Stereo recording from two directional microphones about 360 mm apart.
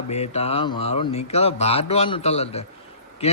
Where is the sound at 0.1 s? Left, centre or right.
Centre.